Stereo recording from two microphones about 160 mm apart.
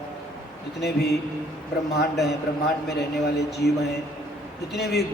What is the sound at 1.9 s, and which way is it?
Mantra, 90° left.